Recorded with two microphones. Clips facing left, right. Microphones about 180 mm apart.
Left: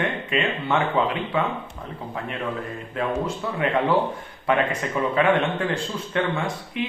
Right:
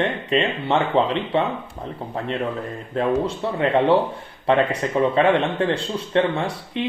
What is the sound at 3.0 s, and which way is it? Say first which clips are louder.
Speech: right 5 dB; 35° right (ahead or behind).